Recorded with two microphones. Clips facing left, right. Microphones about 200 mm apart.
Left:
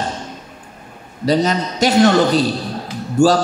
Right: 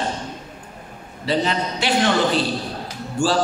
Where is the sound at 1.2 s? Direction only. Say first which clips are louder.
Left 5 dB; 40° left (ahead or behind).